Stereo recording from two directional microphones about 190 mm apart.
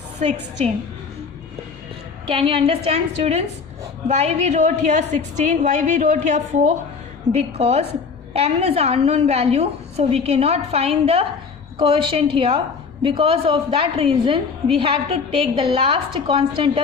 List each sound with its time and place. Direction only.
0.2 s a woman's voice: 35° right (ahead or behind)
2.3 s a woman's voice: 25° right (ahead or behind)